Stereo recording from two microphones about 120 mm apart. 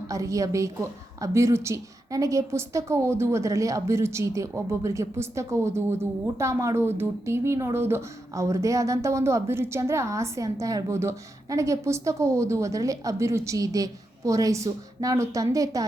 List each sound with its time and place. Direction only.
0.1 s a woman's voice: 25° right (ahead or behind)